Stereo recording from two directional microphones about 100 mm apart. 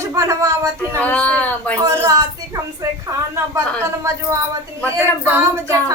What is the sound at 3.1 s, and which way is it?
Speech, 30° right (ahead or behind).